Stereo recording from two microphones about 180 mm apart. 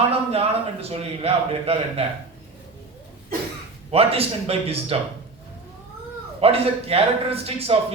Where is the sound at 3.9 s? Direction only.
35° right (ahead or behind).